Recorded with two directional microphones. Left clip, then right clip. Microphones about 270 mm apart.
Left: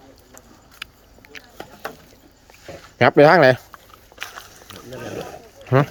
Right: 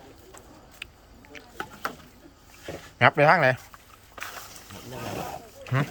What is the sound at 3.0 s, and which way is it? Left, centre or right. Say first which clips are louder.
Speech: left 7 dB; left.